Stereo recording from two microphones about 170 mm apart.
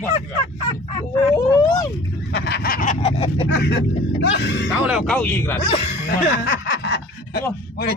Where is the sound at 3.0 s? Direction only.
35° left (ahead or behind).